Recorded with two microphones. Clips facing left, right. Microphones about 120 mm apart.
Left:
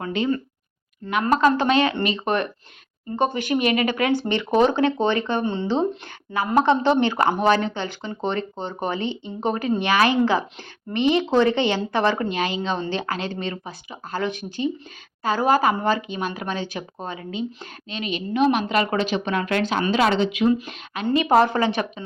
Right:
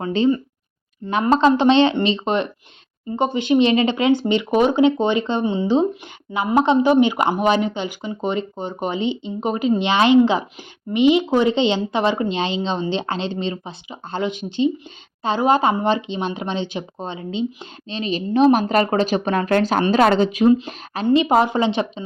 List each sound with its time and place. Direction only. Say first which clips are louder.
0.0 s speech: right 5 dB; 30° right (ahead or behind)
21.1 s speech: right 2 dB; 20° right (ahead or behind)